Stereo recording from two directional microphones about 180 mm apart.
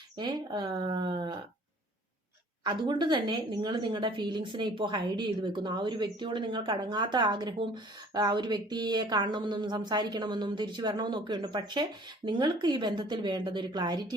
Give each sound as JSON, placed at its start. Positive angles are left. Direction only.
{"t": 0.2, "sound": "a woman's voice", "side_deg": -25}
{"t": 2.6, "sound": "a woman's voice", "side_deg": -25}